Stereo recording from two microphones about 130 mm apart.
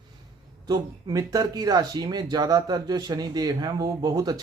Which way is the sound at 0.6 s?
30° right (ahead or behind).